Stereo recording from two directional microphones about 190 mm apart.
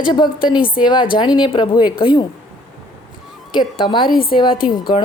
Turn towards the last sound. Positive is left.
turn(degrees=25)  # may be behind; listen again after turning